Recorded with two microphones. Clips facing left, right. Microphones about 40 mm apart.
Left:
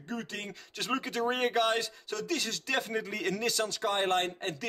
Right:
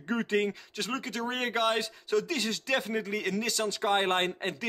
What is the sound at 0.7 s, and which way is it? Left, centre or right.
Speech, centre.